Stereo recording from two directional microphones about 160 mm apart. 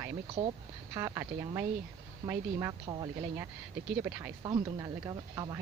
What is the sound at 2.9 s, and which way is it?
Speech, 25° right (ahead or behind).